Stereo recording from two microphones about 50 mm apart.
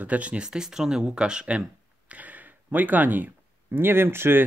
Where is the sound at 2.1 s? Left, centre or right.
Right.